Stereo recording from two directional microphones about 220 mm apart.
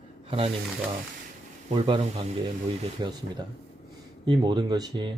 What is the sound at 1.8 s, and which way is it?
Speech, 25° right (ahead or behind).